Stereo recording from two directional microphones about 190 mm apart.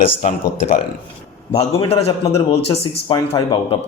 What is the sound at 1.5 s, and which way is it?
Speech, 30° left (ahead or behind).